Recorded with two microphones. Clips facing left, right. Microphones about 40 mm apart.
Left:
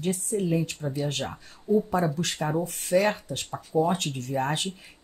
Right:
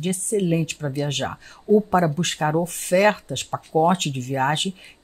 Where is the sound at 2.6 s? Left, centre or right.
Right.